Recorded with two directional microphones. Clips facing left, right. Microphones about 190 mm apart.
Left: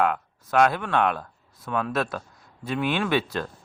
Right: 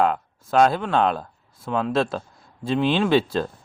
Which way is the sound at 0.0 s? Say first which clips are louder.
Right 3 dB; 25° right (ahead or behind).